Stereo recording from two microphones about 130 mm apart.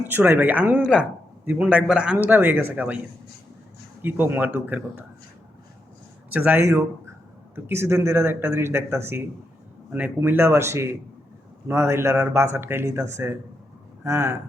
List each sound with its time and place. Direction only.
0.0 s speech: 15° right (ahead or behind)
4.0 s speech: 15° right (ahead or behind)
6.3 s a man's voice: 10° right (ahead or behind)